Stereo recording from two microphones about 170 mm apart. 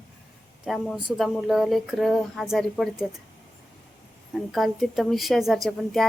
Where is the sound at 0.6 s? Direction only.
5° right (ahead or behind).